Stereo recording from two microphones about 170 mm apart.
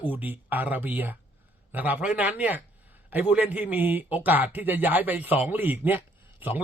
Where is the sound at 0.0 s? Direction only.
10° right (ahead or behind).